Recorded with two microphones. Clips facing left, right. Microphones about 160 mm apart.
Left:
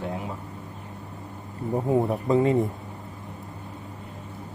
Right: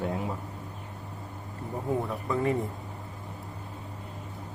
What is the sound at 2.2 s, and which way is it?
Speech, 20° left (ahead or behind).